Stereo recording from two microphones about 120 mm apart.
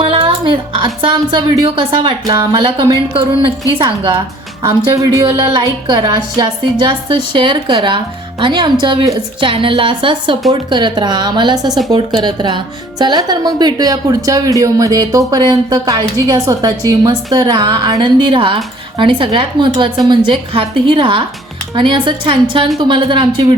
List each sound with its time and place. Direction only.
0.0 s speech: 50° right (ahead or behind)
3.1 s a woman's voice: 45° right (ahead or behind)